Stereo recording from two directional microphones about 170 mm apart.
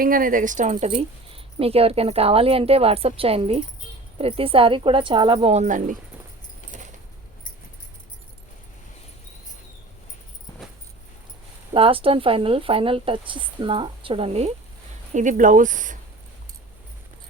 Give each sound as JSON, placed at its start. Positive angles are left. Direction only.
{"t": 0.0, "sound": "speech", "side_deg": -55}
{"t": 6.7, "sound": "keys jangling", "side_deg": -45}
{"t": 11.7, "sound": "speech", "side_deg": -30}
{"t": 15.1, "sound": "speech", "side_deg": -45}